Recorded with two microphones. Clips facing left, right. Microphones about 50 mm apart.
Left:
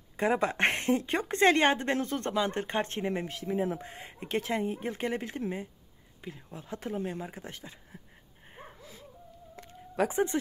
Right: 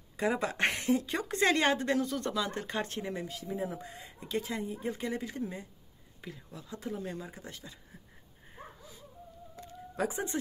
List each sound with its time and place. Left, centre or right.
0.2 s a woman's voice: left
6.2 s speech: centre
6.6 s speech: left
7.0 s a woman's voice: left
9.6 s a sound: left